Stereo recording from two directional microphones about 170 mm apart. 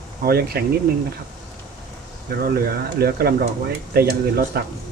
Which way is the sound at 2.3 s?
65° right (ahead or behind).